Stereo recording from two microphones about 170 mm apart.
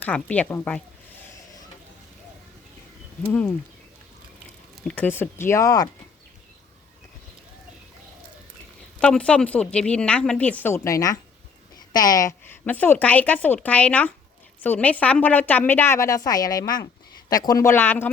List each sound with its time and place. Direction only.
0.0 s a woman's voice: 10° left (ahead or behind)
4.9 s a woman's voice: 10° left (ahead or behind)
9.0 s a woman's voice: 5° left (ahead or behind)